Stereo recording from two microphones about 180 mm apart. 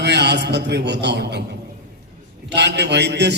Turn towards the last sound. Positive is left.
turn(degrees=-70)  # may be behind; listen again after turning